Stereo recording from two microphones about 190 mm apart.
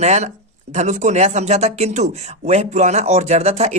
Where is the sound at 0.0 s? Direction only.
35° right (ahead or behind).